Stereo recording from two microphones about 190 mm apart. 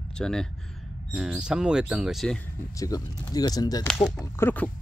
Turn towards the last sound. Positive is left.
turn(degrees=10)  # may be behind; listen again after turning